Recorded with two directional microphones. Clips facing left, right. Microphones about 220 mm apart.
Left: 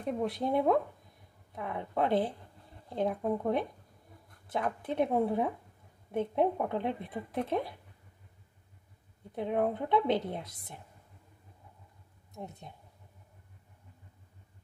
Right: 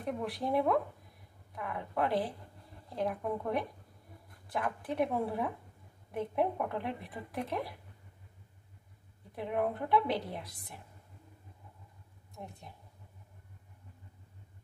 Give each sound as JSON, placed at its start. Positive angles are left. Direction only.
{"t": 0.2, "sound": "a woman's voice", "side_deg": 25}
{"t": 9.3, "sound": "a woman's voice", "side_deg": 25}
{"t": 12.4, "sound": "a woman's voice", "side_deg": 20}